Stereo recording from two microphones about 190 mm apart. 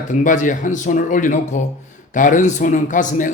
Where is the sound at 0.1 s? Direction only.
40° left (ahead or behind).